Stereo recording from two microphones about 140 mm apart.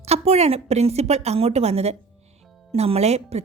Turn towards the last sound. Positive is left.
turn(degrees=-50)  # may be behind; listen again after turning